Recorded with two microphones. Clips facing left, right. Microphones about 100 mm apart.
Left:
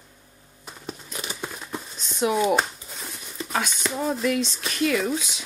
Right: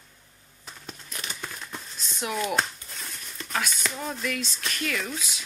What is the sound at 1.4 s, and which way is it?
Crumpling, 10° left (ahead or behind).